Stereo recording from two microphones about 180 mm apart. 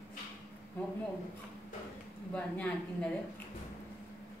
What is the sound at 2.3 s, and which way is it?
Speech, 5° left (ahead or behind).